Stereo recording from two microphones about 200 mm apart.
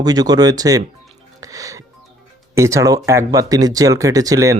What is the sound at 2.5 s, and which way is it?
Speech, 15° right (ahead or behind).